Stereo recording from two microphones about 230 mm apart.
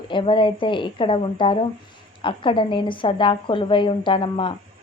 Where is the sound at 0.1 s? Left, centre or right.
Left.